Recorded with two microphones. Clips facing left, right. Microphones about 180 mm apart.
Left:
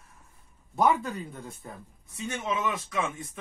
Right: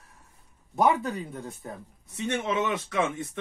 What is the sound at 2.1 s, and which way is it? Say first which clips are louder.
A man's voice: right 4 dB; 70° right (ahead or behind).